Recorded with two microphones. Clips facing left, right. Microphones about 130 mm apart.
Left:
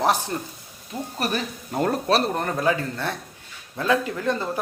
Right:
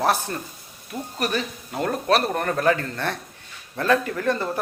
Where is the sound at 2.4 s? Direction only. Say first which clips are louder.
Right 2 dB; 15° left (ahead or behind).